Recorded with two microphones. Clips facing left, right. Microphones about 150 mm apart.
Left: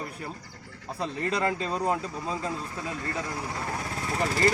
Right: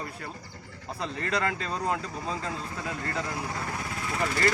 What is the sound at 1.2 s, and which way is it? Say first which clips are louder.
Speech: left 2 dB; 20° left (ahead or behind).